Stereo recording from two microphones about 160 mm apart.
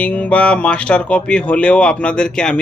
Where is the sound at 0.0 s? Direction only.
10° left (ahead or behind).